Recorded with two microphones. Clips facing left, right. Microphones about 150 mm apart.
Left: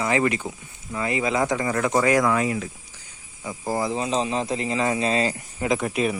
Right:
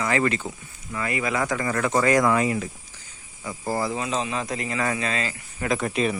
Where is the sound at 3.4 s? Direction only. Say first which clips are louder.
Left 1 dB; 15° left (ahead or behind).